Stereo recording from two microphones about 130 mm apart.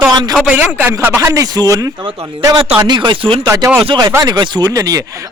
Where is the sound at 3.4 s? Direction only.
20° right (ahead or behind).